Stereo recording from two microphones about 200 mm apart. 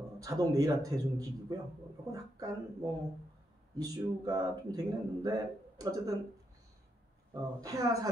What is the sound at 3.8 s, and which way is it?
Speech, 20° right (ahead or behind).